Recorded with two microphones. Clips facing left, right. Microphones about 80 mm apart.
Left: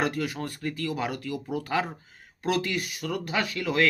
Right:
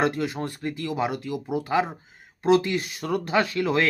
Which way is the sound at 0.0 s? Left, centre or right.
Right.